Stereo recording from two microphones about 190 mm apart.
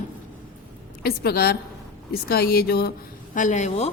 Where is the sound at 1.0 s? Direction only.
55° left (ahead or behind).